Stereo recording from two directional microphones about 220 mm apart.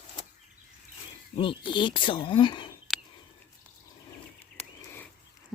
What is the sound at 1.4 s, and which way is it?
Speech, 20° left (ahead or behind).